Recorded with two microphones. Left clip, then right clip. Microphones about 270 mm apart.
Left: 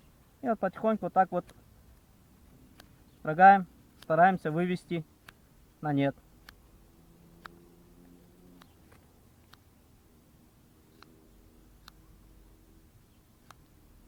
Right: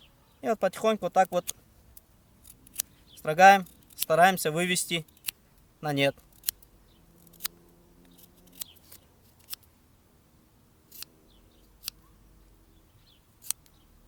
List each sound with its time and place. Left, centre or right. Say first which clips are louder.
0.4 s speech: right 3 dB; right
3.2 s speech: right 2 dB; right
5.8 s keys jangling: right 3 dB; right